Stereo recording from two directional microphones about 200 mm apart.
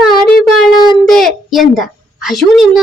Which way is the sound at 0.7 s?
20° left (ahead or behind).